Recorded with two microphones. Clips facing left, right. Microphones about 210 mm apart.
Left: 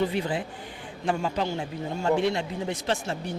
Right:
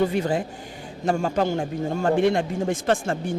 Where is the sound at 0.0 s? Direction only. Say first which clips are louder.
Right 5 dB; 45° right (ahead or behind).